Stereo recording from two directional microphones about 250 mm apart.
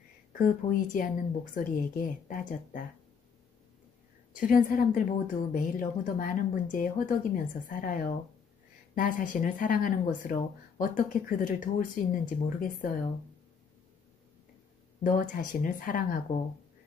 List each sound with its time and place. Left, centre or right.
0.3 s speech: left
4.4 s speech: left
15.0 s speech: left